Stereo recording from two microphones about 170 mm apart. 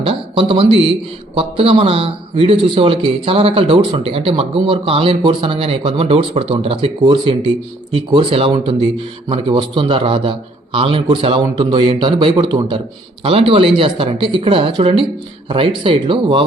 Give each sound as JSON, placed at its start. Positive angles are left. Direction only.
{"t": 0.0, "sound": "a man's voice", "side_deg": -35}